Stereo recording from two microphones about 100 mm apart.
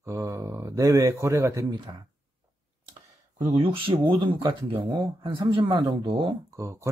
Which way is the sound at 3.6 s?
60° right (ahead or behind).